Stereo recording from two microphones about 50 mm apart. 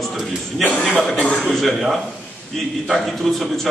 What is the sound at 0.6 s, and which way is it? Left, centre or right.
Speech, left.